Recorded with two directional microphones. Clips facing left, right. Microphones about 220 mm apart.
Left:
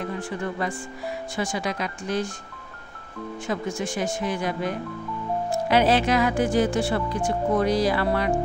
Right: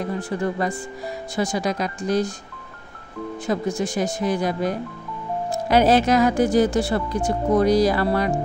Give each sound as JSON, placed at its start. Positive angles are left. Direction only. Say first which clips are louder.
{"t": 0.2, "sound": "speech", "louder": "right 4 dB", "side_deg": -40}
{"t": 3.4, "sound": "speech", "louder": "right 5 dB", "side_deg": -35}